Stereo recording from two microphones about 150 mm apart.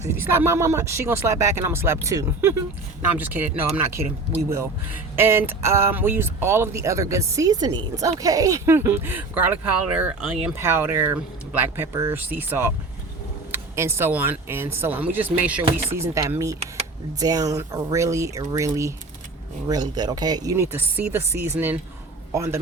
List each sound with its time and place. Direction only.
0.1 s speech: 15° right (ahead or behind)
4.0 s speech: 40° right (ahead or behind)
4.4 s speech: 20° right (ahead or behind)
10.6 s a man's voice: 15° right (ahead or behind)